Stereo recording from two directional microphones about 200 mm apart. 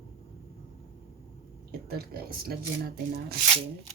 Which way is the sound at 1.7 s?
50° right (ahead or behind).